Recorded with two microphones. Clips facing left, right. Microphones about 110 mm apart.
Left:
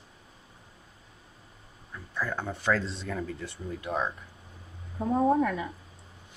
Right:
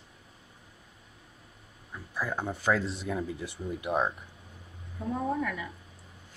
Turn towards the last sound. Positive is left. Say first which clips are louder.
# left 7 dB
turn(degrees=35)  # may be behind; listen again after turning